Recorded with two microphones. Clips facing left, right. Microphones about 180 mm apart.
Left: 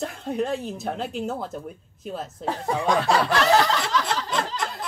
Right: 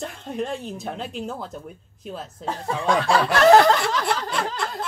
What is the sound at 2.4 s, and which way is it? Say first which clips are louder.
Speech: left 1 dB; 15° left (ahead or behind).